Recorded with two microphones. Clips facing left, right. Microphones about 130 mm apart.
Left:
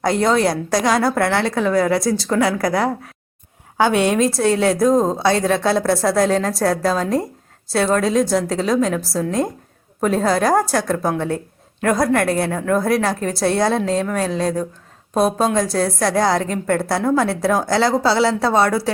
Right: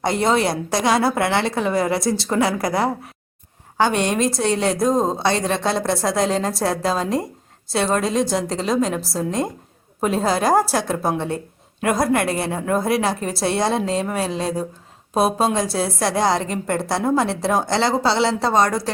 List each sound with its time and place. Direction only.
0.0 s a woman's voice: centre (ahead or behind)